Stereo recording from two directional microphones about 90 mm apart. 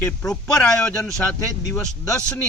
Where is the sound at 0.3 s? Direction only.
10° left (ahead or behind).